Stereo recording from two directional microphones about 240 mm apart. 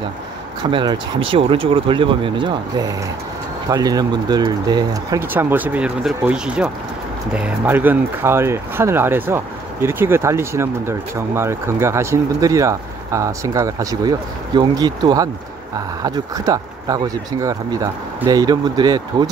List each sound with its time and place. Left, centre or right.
0.7 s speech: centre